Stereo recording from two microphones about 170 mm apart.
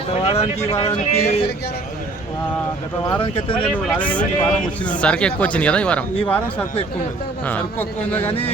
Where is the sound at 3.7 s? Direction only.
10° left (ahead or behind).